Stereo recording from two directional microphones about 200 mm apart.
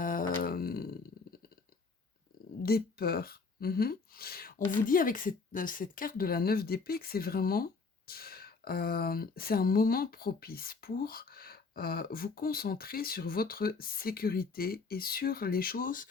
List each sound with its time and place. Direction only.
0.0 s grunt: 45° left (ahead or behind)
0.4 s a sound: 50° left (ahead or behind)
2.6 s speech: 50° left (ahead or behind)